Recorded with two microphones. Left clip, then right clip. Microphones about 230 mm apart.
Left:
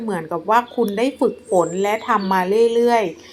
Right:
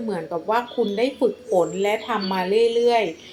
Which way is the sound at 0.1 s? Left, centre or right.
Left.